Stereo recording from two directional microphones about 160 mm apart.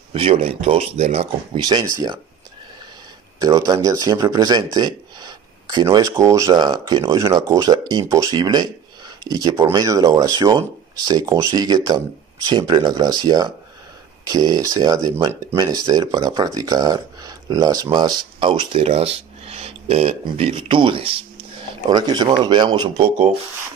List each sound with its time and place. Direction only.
0.1 s speech: 35° right (ahead or behind)
1.6 s speech: 25° right (ahead or behind)
3.3 s speech: 25° right (ahead or behind)